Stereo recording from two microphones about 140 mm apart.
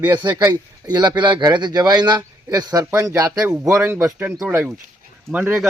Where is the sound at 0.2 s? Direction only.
30° right (ahead or behind).